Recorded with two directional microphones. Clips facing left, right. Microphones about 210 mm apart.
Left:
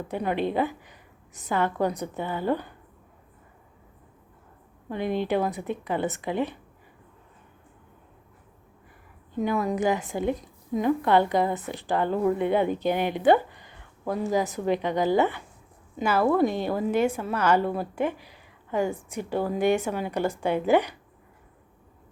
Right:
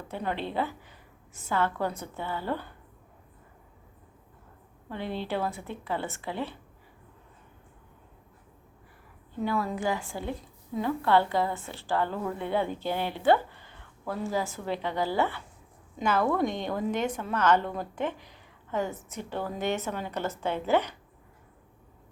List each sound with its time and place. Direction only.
0.1 s a woman's voice: 15° left (ahead or behind)
4.9 s a woman's voice: 15° left (ahead or behind)
9.3 s a woman's voice: 15° left (ahead or behind)
16.0 s a woman's voice: 5° left (ahead or behind)